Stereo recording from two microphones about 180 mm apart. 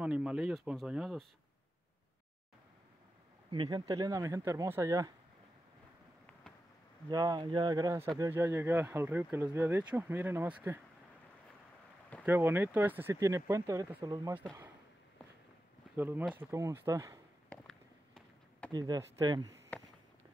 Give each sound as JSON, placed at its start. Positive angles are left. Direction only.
{"t": 0.0, "sound": "speech", "side_deg": -5}
{"t": 3.5, "sound": "speech", "side_deg": -25}
{"t": 7.1, "sound": "speech", "side_deg": -20}
{"t": 12.3, "sound": "speech", "side_deg": -10}
{"t": 16.0, "sound": "speech", "side_deg": -10}
{"t": 17.5, "sound": "run", "side_deg": 5}
{"t": 18.7, "sound": "speech", "side_deg": -20}